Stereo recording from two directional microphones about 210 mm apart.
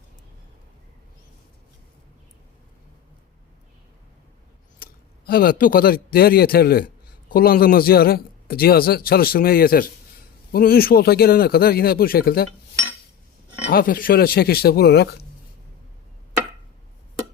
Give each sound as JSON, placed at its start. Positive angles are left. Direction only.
{"t": 4.8, "sound": "a man's voice", "side_deg": 45}
{"t": 13.7, "sound": "a man's voice", "side_deg": 45}